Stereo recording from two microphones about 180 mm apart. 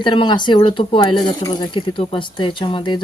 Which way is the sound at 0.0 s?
25° left (ahead or behind).